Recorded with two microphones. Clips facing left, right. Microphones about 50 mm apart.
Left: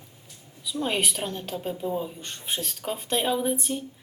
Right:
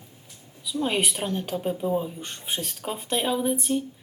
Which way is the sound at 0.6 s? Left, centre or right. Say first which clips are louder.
Right 1 dB; centre.